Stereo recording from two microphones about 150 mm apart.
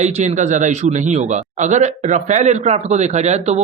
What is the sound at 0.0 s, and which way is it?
A man's voice, 50° right (ahead or behind).